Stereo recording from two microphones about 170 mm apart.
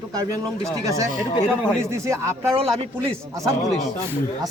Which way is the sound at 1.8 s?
15° right (ahead or behind).